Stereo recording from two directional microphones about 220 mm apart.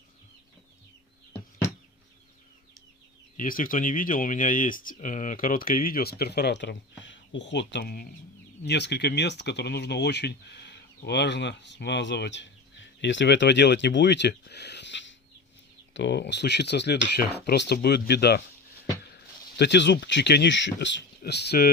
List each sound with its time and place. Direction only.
3.3 s speech: 40° left (ahead or behind)